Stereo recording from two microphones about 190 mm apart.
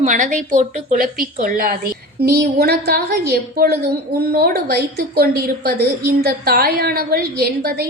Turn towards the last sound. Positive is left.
turn(degrees=-55)  # may be behind; listen again after turning